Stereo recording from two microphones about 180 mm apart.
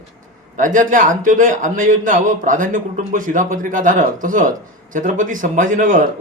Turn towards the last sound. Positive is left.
turn(degrees=-50)  # may be behind; listen again after turning